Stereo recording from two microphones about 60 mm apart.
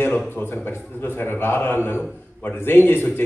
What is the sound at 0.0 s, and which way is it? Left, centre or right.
A man's voice, left.